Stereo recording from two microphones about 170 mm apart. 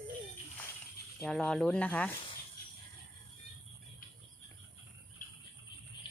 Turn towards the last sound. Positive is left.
turn(degrees=50)  # may be behind; listen again after turning